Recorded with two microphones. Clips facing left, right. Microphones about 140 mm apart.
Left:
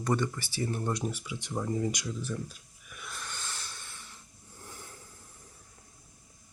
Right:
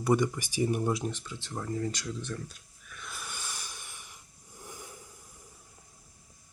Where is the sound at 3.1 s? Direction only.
10° right (ahead or behind).